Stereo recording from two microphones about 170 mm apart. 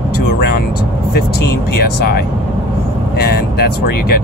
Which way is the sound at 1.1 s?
65° left (ahead or behind).